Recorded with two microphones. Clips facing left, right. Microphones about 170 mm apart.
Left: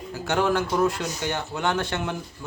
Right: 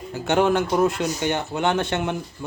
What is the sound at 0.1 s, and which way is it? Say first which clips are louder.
Speech: right 4 dB; 25° right (ahead or behind).